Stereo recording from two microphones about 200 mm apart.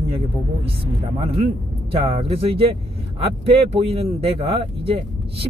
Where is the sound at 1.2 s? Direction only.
30° right (ahead or behind).